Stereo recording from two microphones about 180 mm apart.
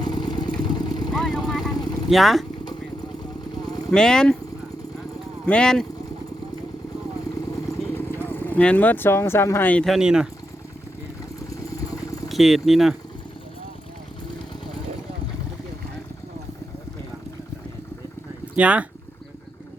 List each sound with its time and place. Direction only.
0.0 s vehicle: 25° left (ahead or behind)
1.1 s vehicle: 5° left (ahead or behind)
1.5 s speech: centre (ahead or behind)
3.9 s speech: 5° left (ahead or behind)
5.5 s speech: 5° left (ahead or behind)
7.9 s speech: 10° left (ahead or behind)
11.4 s vehicle: 20° left (ahead or behind)
12.3 s speech: centre (ahead or behind)
18.5 s speech: 5° right (ahead or behind)